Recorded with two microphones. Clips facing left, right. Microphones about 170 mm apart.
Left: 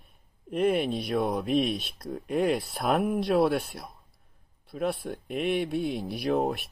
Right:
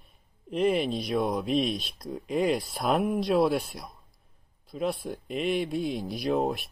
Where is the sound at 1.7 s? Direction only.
65° left (ahead or behind).